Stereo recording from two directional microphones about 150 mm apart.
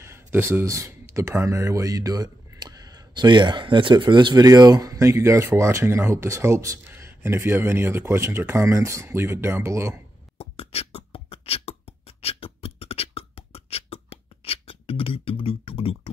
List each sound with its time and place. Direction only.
0.0 s speech: 15° right (ahead or behind)
10.3 s beatboxing: 40° left (ahead or behind)